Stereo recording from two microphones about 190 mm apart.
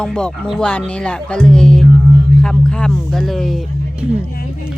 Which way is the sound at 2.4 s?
5° left (ahead or behind).